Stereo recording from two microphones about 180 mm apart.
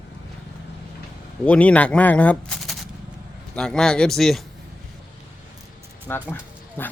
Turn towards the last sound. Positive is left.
turn(degrees=10)  # may be behind; listen again after turning